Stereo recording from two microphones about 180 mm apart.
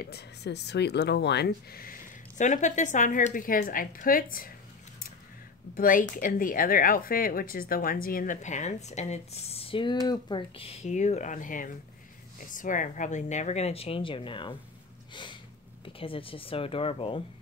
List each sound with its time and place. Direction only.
0.0 s speech: 65° left (ahead or behind)
5.8 s speech: 50° left (ahead or behind); by 14.6 s 25° left (ahead or behind)
15.8 s speech: 30° left (ahead or behind)